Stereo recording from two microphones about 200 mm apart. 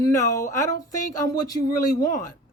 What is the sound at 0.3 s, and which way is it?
Speech, 15° left (ahead or behind).